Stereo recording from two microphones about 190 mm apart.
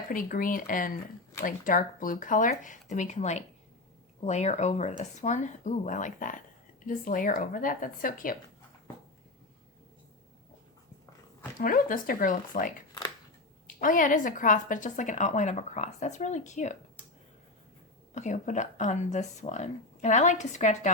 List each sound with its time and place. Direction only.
0.1 s a woman's voice: 45° left (ahead or behind)
11.6 s speech: 50° left (ahead or behind)
13.8 s a woman's voice: 45° left (ahead or behind)
18.1 s a woman's voice: 40° left (ahead or behind)